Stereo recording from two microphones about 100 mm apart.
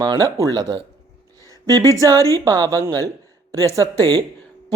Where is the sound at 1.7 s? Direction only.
35° right (ahead or behind).